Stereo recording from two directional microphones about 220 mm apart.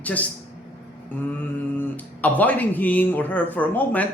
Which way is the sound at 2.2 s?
5° left (ahead or behind).